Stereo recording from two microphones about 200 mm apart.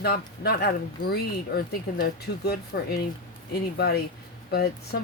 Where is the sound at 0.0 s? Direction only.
55° left (ahead or behind).